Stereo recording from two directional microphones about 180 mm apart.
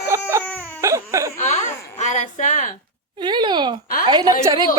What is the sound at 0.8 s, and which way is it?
Baby cry, 15° right (ahead or behind).